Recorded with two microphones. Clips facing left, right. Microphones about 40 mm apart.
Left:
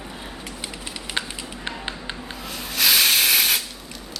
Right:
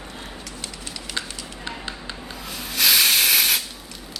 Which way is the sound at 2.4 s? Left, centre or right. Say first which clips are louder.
Even; centre.